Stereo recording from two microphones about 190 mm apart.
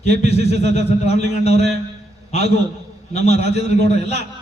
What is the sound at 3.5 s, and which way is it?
Speech, 35° left (ahead or behind).